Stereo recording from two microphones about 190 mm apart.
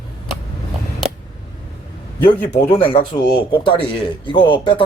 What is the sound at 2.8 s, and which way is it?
Speech, 25° left (ahead or behind).